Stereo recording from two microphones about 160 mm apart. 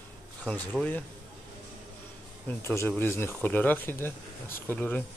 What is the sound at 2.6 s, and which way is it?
Speech, 15° left (ahead or behind).